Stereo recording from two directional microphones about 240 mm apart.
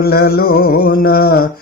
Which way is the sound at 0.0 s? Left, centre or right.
Left.